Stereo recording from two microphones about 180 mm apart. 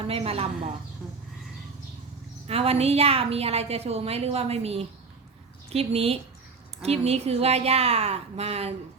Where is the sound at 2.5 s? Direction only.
35° right (ahead or behind).